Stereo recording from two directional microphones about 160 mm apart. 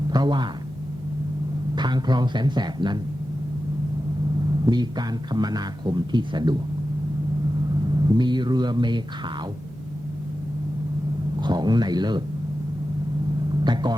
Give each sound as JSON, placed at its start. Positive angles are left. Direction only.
{"t": 0.1, "sound": "speech", "side_deg": -25}
{"t": 1.7, "sound": "speech", "side_deg": -25}
{"t": 4.6, "sound": "speech", "side_deg": -25}
{"t": 8.0, "sound": "speech", "side_deg": -25}
{"t": 11.3, "sound": "speech", "side_deg": -25}